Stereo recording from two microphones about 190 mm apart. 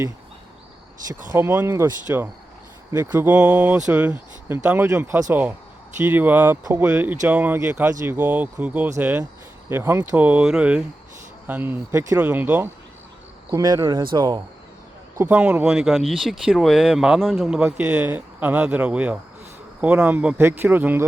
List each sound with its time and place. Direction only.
1.3 s speech: 15° right (ahead or behind)
13.5 s speech: 20° right (ahead or behind)
15.2 s speech: 10° right (ahead or behind)